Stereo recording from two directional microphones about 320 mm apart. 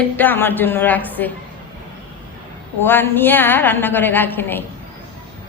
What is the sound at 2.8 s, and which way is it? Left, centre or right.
A woman's voice, centre.